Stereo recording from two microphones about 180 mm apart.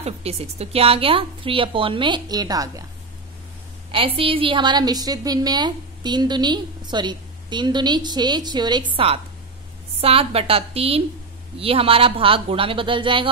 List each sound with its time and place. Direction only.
0.0 s a woman's voice: 35° right (ahead or behind); by 2.8 s 20° right (ahead or behind)
3.9 s a woman's voice: 30° right (ahead or behind)